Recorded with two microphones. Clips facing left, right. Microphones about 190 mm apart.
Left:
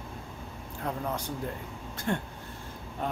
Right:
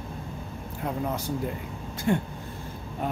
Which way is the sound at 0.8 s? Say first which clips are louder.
Right 3 dB; 10° right (ahead or behind).